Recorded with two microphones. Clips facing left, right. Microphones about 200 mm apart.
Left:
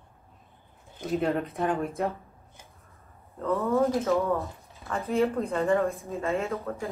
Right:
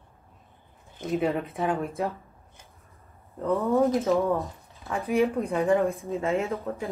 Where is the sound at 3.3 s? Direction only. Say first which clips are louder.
Right 2 dB; 15° right (ahead or behind).